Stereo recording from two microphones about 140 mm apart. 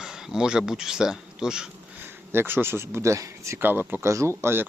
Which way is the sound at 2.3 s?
15° right (ahead or behind).